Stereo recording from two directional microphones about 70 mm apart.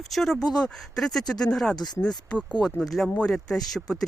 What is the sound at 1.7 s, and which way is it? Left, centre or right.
Speech, left.